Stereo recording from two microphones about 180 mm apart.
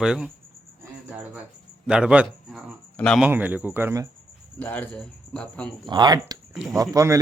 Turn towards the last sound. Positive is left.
turn(degrees=-20)  # may be behind; listen again after turning